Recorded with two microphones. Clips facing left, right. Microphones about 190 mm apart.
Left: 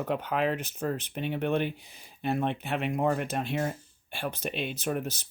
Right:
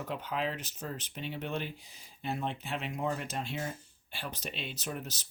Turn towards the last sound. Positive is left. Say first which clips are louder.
# left 8 dB
turn(degrees=55)  # may be behind; listen again after turning